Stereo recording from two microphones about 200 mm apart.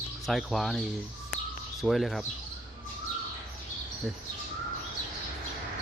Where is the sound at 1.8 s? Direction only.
Centre (ahead or behind).